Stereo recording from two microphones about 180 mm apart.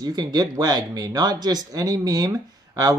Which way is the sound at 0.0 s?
20° right (ahead or behind).